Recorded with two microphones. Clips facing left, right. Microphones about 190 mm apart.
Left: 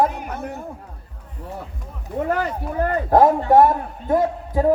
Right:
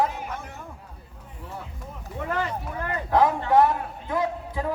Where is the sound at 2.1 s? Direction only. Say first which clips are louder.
Left 6 dB; 45° left (ahead or behind).